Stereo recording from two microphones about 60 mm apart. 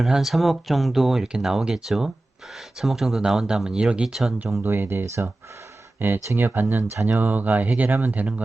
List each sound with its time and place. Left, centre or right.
0.0 s speech: centre
4.6 s speech: right
6.7 s speech: right
7.2 s speech: right